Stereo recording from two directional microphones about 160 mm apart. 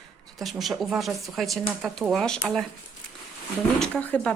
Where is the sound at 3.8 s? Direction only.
10° left (ahead or behind).